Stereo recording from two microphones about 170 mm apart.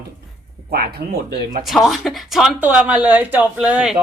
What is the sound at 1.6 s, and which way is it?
Speech, centre (ahead or behind).